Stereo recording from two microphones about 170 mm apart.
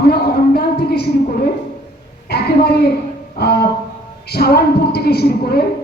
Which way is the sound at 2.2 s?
70° left (ahead or behind).